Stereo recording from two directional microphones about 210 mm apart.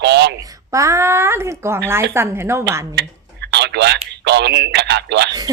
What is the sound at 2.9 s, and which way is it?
Speech, 55° right (ahead or behind).